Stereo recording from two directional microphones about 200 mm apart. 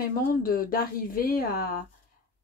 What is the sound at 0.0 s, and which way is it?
Speech, 45° left (ahead or behind).